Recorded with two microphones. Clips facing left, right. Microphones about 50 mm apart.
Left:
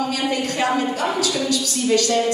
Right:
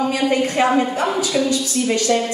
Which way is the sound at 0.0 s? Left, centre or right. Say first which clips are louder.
Right 4 dB; right.